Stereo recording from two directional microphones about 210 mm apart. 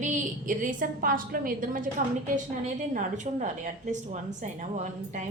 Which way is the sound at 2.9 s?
35° right (ahead or behind).